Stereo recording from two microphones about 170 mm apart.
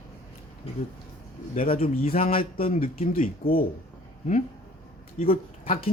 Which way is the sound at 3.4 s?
60° left (ahead or behind).